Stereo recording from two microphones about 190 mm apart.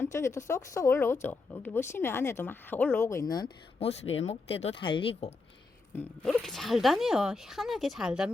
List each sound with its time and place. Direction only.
0.0 s speech: 15° left (ahead or behind)
3.8 s speech: 30° left (ahead or behind)
6.2 s speech: centre (ahead or behind)